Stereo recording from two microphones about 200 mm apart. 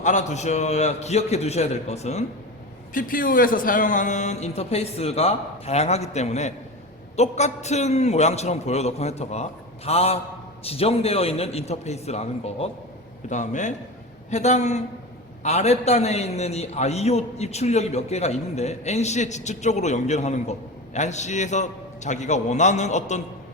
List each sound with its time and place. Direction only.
0.0 s a man's voice: 35° left (ahead or behind)
2.9 s a man's voice: 45° left (ahead or behind)